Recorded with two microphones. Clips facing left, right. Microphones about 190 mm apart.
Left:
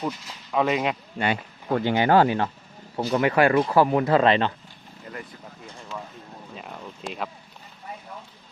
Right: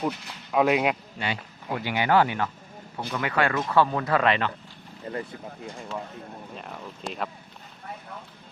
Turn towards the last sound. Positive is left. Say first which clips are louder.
# even
turn(degrees=0)  # may be behind; listen again after turning